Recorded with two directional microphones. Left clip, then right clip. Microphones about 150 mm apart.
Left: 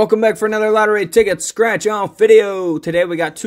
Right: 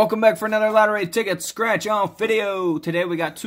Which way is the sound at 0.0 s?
20° left (ahead or behind).